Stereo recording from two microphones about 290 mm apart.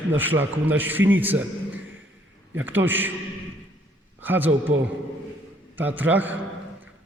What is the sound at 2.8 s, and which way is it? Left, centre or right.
Speech, centre.